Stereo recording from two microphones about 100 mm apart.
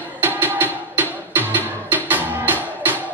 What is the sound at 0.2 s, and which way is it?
Music, 20° right (ahead or behind).